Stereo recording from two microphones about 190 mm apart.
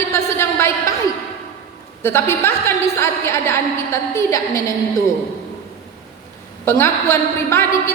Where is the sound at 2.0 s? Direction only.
10° left (ahead or behind).